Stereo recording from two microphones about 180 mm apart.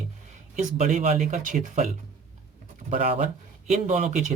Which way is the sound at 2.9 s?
40° right (ahead or behind).